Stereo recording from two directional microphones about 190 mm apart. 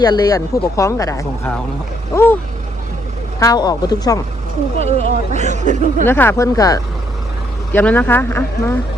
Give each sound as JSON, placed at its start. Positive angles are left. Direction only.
{"t": 0.0, "sound": "speech", "side_deg": 20}
{"t": 3.4, "sound": "speech", "side_deg": 20}
{"t": 4.8, "sound": "speech", "side_deg": -35}
{"t": 6.1, "sound": "speech", "side_deg": 10}